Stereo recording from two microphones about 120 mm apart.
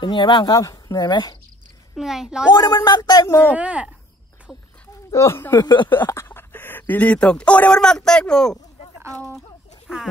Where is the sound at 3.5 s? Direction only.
10° right (ahead or behind).